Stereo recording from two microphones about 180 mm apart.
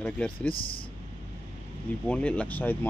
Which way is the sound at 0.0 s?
5° left (ahead or behind).